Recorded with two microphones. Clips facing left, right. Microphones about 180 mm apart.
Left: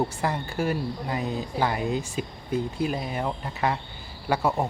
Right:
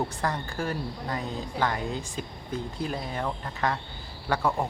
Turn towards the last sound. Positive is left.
turn(degrees=15)  # may be behind; listen again after turning